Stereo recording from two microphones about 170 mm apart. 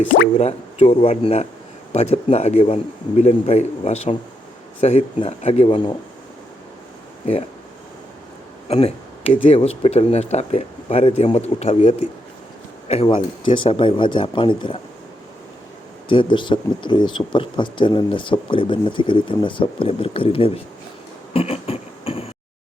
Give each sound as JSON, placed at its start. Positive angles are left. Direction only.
{"t": 0.3, "sound": "speech", "side_deg": 40}
{"t": 8.7, "sound": "speech", "side_deg": 35}
{"t": 16.0, "sound": "speech", "side_deg": 30}
{"t": 21.3, "sound": "beatboxing", "side_deg": 35}